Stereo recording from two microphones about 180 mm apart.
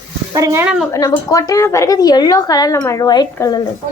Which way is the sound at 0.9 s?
20° left (ahead or behind).